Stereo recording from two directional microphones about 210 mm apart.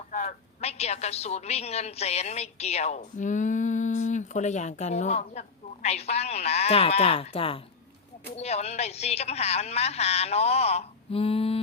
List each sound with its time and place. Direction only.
0.1 s a woman's voice: 35° left (ahead or behind)